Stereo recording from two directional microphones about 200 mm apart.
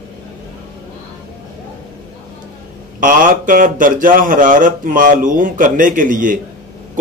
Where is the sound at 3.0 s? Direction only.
40° right (ahead or behind).